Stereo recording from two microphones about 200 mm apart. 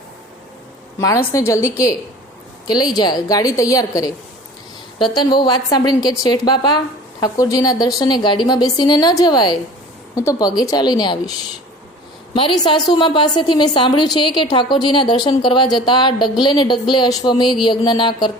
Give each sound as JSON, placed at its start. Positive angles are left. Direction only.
{"t": 0.9, "sound": "a woman's voice", "side_deg": 15}
{"t": 5.1, "sound": "a woman's voice", "side_deg": 20}
{"t": 12.3, "sound": "a woman's voice", "side_deg": 25}